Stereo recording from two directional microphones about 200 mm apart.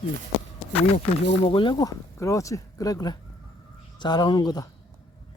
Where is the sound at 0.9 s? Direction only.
30° left (ahead or behind).